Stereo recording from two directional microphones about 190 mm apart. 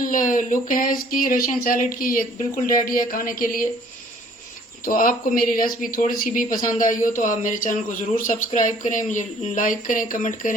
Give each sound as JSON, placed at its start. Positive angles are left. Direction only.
{"t": 0.0, "sound": "speech", "side_deg": 45}
{"t": 4.9, "sound": "speech", "side_deg": 45}